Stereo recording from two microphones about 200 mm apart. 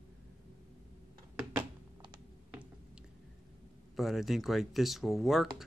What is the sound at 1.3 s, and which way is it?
Computer keyboard, 20° right (ahead or behind).